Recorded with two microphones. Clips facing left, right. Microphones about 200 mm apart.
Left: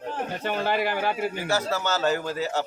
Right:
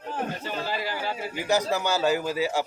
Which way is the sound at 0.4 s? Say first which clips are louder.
Left 5 dB; 60° left (ahead or behind).